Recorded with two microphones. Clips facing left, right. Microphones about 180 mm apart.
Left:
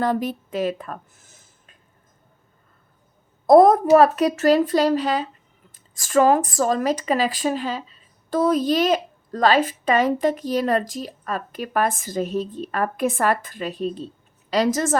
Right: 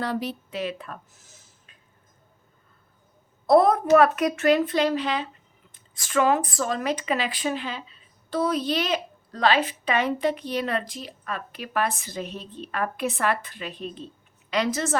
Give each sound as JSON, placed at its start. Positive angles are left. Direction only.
{"t": 0.0, "sound": "speech", "side_deg": 50}
{"t": 3.4, "sound": "a woman's voice", "side_deg": 45}
{"t": 3.9, "sound": "speech", "side_deg": 35}